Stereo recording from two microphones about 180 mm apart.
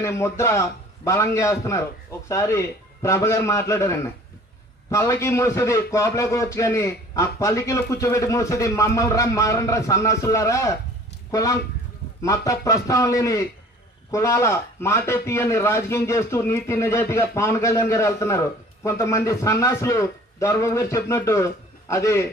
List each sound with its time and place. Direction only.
0.0 s speech: 15° left (ahead or behind)
12.2 s a man's voice: 20° left (ahead or behind)